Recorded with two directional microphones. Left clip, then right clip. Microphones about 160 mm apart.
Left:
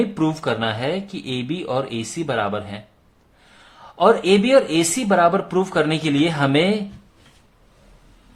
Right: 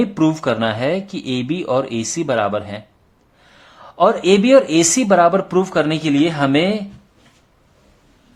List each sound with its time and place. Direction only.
0.0 s speech: 20° right (ahead or behind)